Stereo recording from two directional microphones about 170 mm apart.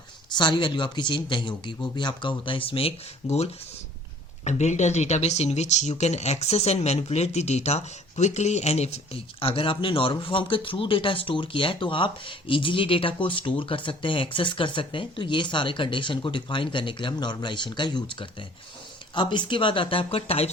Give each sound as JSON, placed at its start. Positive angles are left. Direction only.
{"t": 0.3, "sound": "speech", "side_deg": 25}
{"t": 4.4, "sound": "speech", "side_deg": 45}